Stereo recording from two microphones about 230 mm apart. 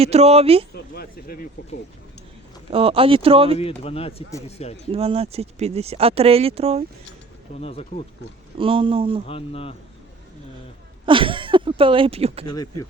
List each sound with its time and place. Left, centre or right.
0.0 s speech: right
0.7 s speech: left
2.7 s speech: right
3.6 s speech: left
4.9 s speech: right
7.6 s speech: left
8.5 s speech: right
9.2 s speech: left
11.0 s speech: right